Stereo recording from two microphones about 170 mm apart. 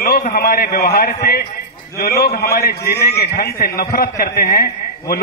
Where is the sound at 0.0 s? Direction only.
55° left (ahead or behind).